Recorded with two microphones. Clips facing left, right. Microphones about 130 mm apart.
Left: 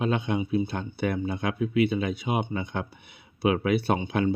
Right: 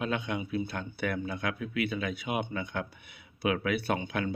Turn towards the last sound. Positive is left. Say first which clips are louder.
# left 6 dB
turn(degrees=30)  # may be behind; listen again after turning